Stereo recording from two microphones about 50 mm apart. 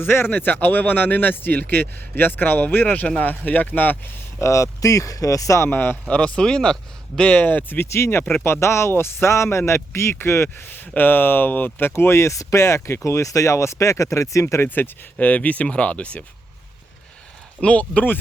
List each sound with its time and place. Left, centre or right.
0.0 s speech: left
0.3 s a man's voice: left
4.4 s speech: left
5.6 s speech: left
6.1 s speech: left
7.3 s a man's voice: left
7.9 s speech: left
8.4 s speech: left
10.7 s speech: left
13.1 s speech: left
14.8 s speech: left
17.6 s speech: left